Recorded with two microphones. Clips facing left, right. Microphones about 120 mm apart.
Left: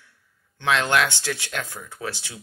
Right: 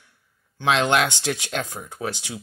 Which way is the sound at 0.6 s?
20° right (ahead or behind).